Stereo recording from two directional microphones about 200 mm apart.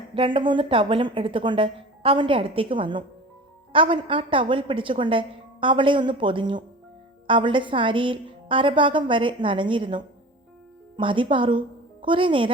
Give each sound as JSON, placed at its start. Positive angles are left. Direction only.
{"t": 0.1, "sound": "a woman's voice", "side_deg": -25}